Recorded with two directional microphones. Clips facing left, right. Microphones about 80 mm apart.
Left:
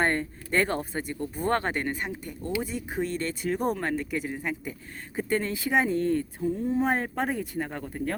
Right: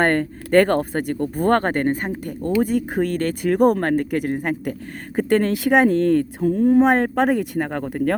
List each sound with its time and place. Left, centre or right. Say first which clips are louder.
0.0 s speech: right 7 dB; right